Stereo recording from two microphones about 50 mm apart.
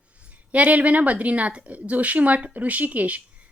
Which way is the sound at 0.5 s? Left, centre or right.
Right.